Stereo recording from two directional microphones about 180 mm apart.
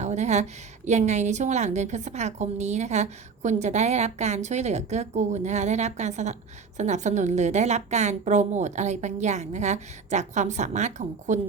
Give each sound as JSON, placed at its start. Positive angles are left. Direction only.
{"t": 0.0, "sound": "a woman's voice", "side_deg": -40}